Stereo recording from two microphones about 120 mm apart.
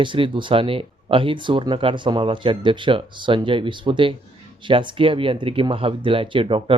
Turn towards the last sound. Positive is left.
turn(degrees=-50)  # may be behind; listen again after turning